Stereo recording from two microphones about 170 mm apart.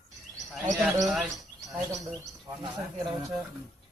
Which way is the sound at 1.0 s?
Centre (ahead or behind).